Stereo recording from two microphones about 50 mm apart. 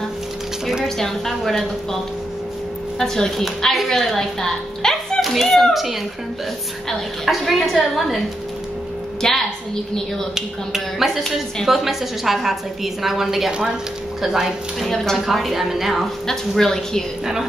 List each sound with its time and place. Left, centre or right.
0.8 s a woman's voice: centre
3.0 s a woman's voice: centre
7.2 s a woman's voice: centre
9.2 s a woman's voice: centre
10.3 s a woman's voice: centre
16.3 s a woman's voice: centre